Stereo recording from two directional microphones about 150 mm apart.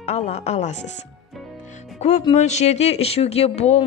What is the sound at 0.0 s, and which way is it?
Speech, 45° left (ahead or behind).